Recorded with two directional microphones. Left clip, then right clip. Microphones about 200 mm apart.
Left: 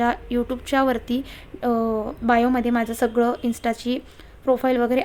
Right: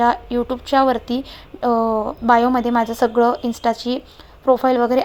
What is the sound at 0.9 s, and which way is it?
Speech, 30° left (ahead or behind).